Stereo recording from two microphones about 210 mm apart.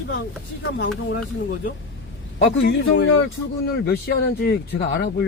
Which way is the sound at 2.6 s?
60° left (ahead or behind).